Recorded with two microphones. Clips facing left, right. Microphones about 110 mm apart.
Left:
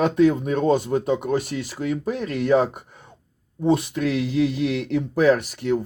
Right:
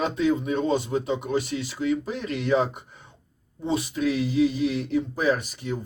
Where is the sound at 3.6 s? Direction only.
55° left (ahead or behind).